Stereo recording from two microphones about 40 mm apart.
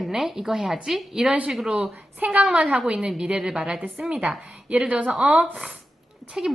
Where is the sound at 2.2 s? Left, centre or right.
Right.